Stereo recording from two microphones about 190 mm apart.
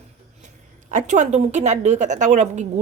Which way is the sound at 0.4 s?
40° right (ahead or behind).